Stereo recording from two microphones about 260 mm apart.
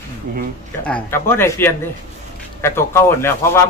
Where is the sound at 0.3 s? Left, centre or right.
Right.